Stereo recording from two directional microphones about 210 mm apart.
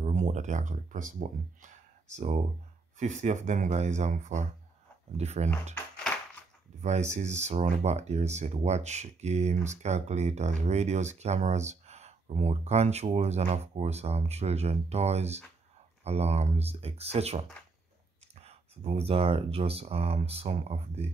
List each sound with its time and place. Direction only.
0.0 s speech: 35° right (ahead or behind)
6.8 s speech: 35° right (ahead or behind)